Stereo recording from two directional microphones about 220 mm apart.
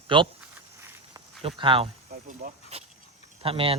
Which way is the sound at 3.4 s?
25° right (ahead or behind).